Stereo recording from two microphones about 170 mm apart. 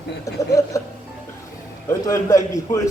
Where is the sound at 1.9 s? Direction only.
15° left (ahead or behind).